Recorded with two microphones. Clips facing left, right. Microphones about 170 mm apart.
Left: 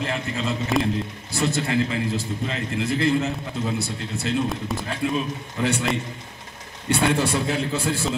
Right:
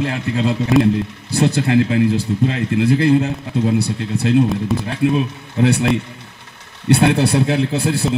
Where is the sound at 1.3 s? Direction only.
65° right (ahead or behind).